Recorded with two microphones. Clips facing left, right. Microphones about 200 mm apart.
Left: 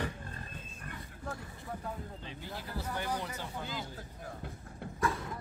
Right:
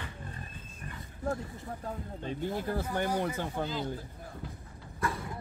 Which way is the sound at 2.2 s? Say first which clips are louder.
Right 10 dB; 50° right (ahead or behind).